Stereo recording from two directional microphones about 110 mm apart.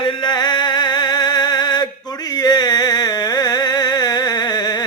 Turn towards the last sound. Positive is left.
turn(degrees=40)  # may be behind; listen again after turning